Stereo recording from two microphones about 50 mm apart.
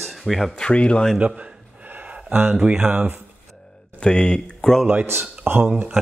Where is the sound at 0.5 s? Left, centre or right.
Left.